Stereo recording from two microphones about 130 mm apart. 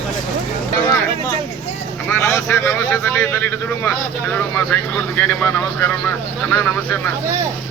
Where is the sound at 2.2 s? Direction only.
20° left (ahead or behind).